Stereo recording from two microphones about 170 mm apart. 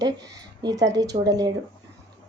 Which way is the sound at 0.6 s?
20° right (ahead or behind).